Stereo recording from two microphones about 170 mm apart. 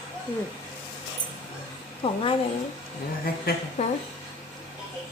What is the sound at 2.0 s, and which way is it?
Speech, 35° left (ahead or behind).